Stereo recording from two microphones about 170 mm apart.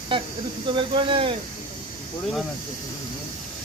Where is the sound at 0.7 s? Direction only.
30° right (ahead or behind).